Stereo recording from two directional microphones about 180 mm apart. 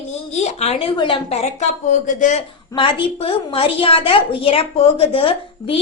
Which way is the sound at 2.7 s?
30° left (ahead or behind).